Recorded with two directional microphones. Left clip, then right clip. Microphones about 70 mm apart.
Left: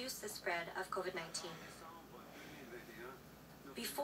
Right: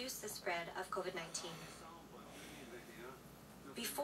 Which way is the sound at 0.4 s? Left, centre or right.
Left.